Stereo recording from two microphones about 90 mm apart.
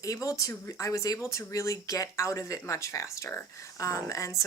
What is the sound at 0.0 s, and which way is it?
A woman's voice, 40° left (ahead or behind).